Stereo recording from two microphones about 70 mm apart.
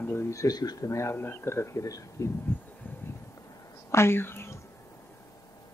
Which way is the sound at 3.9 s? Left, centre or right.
Left.